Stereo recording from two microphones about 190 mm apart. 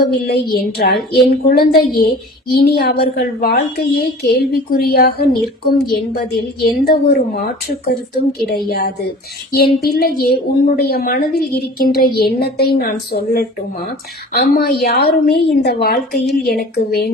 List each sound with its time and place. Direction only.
0.0 s a woman's voice: 55° left (ahead or behind)